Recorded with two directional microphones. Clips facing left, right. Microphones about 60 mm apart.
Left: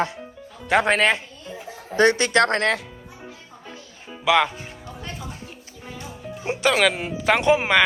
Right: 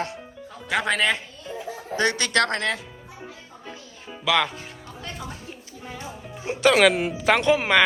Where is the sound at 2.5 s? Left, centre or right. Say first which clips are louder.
Left 4 dB; left.